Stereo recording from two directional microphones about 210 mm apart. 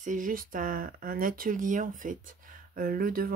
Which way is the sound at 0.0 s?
40° right (ahead or behind).